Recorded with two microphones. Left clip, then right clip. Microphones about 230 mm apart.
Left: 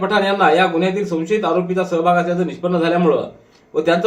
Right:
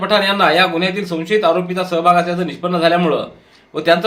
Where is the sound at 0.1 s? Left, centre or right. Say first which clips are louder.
Right 2 dB; right.